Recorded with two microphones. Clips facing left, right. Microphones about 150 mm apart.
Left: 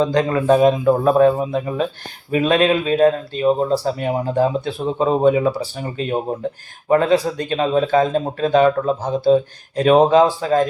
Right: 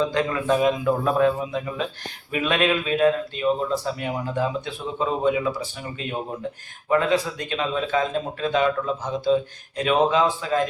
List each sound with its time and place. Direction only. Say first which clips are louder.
0.0 s speech: left 6 dB; 35° left (ahead or behind)